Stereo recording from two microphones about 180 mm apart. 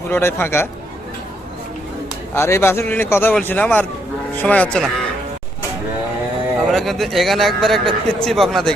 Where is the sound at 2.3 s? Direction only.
15° left (ahead or behind).